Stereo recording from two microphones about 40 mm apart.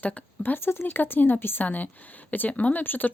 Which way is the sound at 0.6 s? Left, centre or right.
Left.